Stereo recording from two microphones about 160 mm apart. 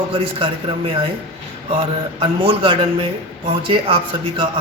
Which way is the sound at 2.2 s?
30° right (ahead or behind).